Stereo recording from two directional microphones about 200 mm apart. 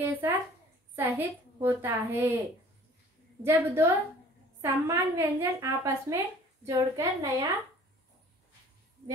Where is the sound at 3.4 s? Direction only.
15° right (ahead or behind).